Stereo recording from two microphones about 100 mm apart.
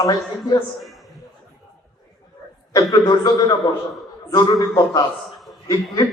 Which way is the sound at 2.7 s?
40° left (ahead or behind).